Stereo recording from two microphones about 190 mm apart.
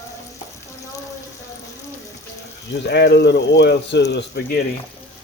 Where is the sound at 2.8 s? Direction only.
60° left (ahead or behind).